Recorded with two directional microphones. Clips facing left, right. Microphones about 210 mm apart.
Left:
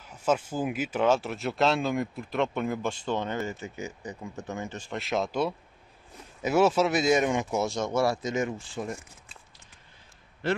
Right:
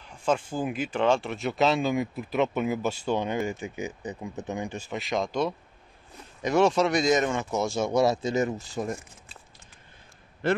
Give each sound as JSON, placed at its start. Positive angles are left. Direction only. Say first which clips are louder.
{"t": 0.0, "sound": "speech", "louder": "even", "side_deg": 5}
{"t": 7.6, "sound": "speech", "louder": "right 2 dB", "side_deg": -5}
{"t": 7.9, "sound": "speech", "louder": "right 4 dB", "side_deg": -20}
{"t": 8.3, "sound": "speech", "louder": "right 3 dB", "side_deg": -40}
{"t": 10.4, "sound": "a man's voice", "louder": "right 3 dB", "side_deg": -50}